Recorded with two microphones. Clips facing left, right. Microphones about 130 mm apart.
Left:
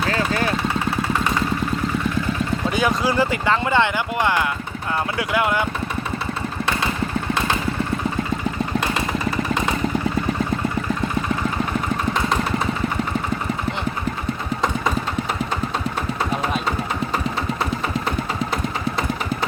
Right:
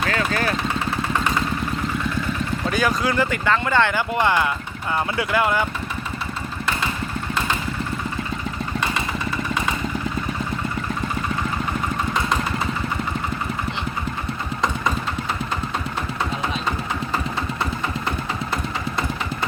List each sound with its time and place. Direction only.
0.1 s vehicle: 30° left (ahead or behind)
2.7 s speech: 25° left (ahead or behind); by 5.6 s 5° left (ahead or behind)